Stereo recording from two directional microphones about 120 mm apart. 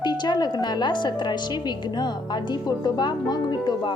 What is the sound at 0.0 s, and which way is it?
A woman's voice, 35° left (ahead or behind).